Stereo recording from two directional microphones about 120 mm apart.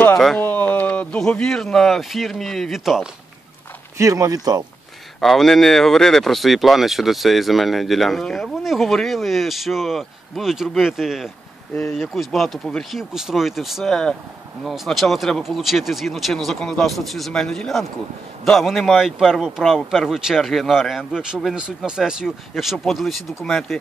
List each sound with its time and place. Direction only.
0.4 s speech: 15° left (ahead or behind); by 3.1 s centre (ahead or behind)
4.0 s speech: 25° right (ahead or behind)
5.2 s speech: centre (ahead or behind)